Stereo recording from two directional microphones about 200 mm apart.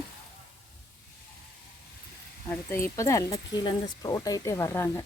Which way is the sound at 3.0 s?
15° left (ahead or behind).